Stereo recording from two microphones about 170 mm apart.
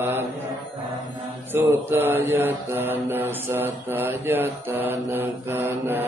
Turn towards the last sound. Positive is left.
turn(degrees=-15)  # may be behind; listen again after turning